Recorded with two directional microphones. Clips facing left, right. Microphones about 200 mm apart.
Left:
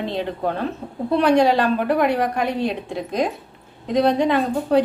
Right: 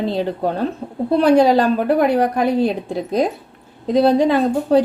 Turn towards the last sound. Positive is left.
turn(degrees=-35)  # may be behind; listen again after turning